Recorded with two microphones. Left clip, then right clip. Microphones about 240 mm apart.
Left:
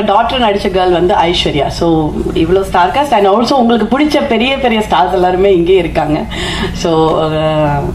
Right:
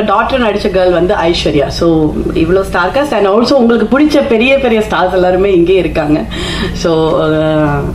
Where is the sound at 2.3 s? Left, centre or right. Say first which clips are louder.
Left 2 dB; left.